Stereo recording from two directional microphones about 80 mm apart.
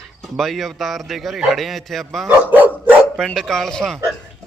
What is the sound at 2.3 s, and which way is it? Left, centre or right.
Dog, right.